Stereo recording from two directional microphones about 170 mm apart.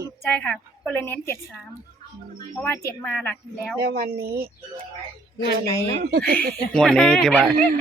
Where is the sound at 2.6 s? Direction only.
10° left (ahead or behind).